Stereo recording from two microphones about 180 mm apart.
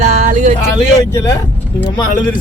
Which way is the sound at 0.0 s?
40° right (ahead or behind).